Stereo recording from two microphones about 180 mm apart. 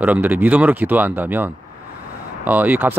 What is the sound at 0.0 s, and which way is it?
A man's voice, 10° right (ahead or behind).